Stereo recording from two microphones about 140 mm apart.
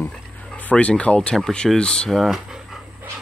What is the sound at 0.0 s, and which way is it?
Speech, 10° left (ahead or behind).